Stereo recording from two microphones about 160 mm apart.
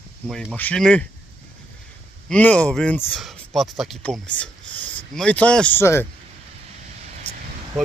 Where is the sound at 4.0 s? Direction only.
10° left (ahead or behind).